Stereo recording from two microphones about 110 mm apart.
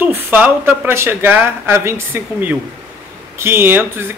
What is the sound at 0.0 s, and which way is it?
Speech, 15° right (ahead or behind).